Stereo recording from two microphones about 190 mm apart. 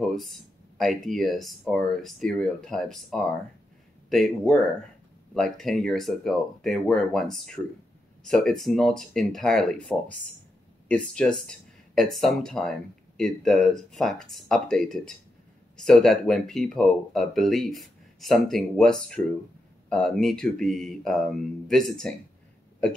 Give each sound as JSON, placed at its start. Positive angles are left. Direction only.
{"t": 0.0, "sound": "speech", "side_deg": 0}